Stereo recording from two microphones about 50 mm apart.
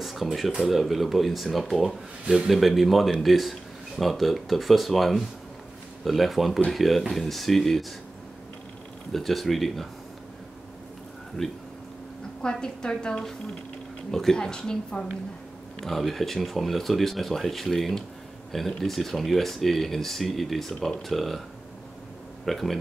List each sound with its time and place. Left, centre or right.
0.0 s speech: centre
9.1 s speech: centre
11.4 s speech: centre
22.4 s speech: centre